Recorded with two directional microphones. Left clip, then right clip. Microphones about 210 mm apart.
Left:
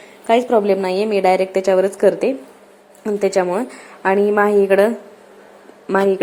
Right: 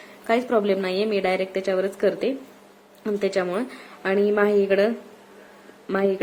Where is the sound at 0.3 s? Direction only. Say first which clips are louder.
Left 7 dB; centre (ahead or behind).